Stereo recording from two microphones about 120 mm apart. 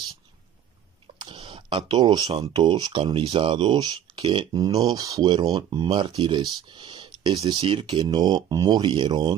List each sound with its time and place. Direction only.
1.1 s a sound: 40° right (ahead or behind)
2.5 s speech: 40° right (ahead or behind)
4.6 s speech: 35° right (ahead or behind)